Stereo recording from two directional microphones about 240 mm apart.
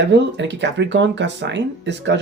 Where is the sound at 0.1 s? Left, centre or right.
Right.